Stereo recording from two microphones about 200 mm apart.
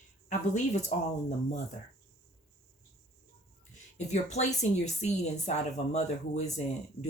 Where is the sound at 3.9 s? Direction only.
35° left (ahead or behind).